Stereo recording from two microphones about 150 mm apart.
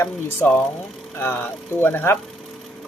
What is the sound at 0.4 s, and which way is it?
Speech, 10° left (ahead or behind).